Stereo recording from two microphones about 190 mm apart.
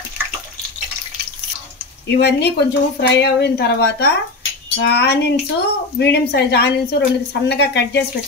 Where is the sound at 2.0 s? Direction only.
60° left (ahead or behind).